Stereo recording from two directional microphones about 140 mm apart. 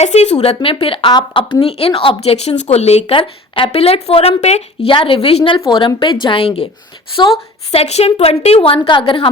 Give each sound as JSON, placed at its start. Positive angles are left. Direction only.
{"t": 0.0, "sound": "a woman's voice", "side_deg": 50}